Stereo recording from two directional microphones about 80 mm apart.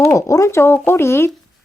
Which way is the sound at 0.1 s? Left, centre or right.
Left.